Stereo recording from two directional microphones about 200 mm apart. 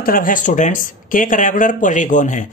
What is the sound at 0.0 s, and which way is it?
Speech, 45° left (ahead or behind).